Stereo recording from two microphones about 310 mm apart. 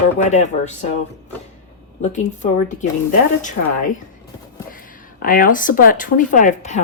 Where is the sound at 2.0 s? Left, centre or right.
Left.